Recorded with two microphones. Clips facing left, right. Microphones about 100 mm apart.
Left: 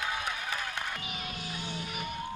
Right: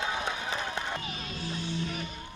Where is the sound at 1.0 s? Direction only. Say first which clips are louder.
Right 2 dB; 15° left (ahead or behind).